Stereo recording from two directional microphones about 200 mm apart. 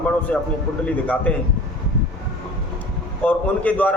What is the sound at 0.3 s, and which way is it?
A man's voice, 5° left (ahead or behind).